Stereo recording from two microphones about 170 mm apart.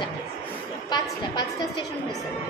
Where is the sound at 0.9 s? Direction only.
25° left (ahead or behind).